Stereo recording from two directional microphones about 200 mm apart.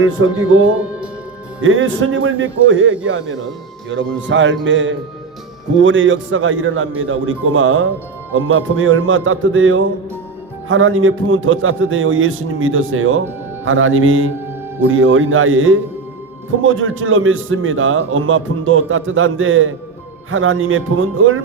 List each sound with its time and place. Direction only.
0.0 s a man's voice: 75° right (ahead or behind)